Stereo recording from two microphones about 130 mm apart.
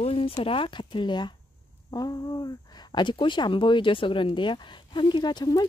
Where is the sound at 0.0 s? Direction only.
45° left (ahead or behind).